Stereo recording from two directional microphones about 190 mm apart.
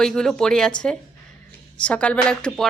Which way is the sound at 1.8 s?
5° left (ahead or behind).